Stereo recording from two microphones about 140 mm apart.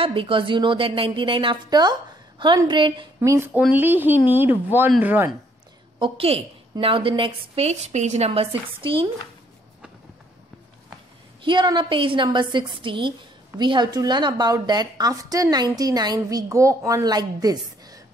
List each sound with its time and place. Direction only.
0.0 s a woman's voice: 40° right (ahead or behind)
3.2 s speech: 15° right (ahead or behind)
5.9 s a woman's voice: 40° right (ahead or behind); by 8.3 s 55° right (ahead or behind)
8.3 s a woman's voice: 40° right (ahead or behind)
11.4 s a woman's voice: 35° right (ahead or behind)